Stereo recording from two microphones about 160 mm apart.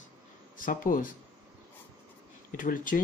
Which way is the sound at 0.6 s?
55° left (ahead or behind).